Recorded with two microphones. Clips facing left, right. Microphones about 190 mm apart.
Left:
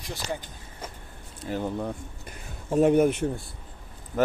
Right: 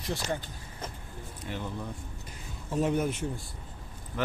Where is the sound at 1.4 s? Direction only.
40° left (ahead or behind).